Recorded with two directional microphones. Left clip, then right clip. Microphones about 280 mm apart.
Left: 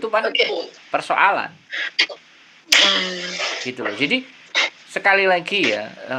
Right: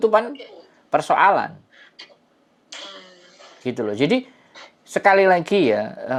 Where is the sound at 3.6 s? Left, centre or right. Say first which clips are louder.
Right 4 dB; right.